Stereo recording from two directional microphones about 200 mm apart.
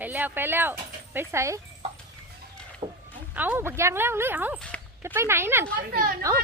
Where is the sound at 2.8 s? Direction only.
25° right (ahead or behind).